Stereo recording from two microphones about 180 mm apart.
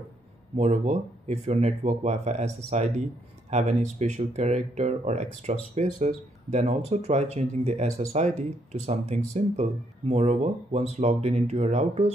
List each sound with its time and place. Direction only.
0.6 s speech: 40° right (ahead or behind)